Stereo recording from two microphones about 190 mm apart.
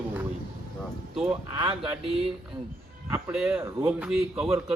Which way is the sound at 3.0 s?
10° right (ahead or behind).